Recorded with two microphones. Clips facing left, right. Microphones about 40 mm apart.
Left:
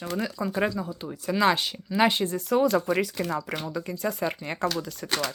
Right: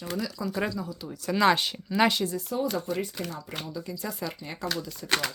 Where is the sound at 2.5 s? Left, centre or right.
Left.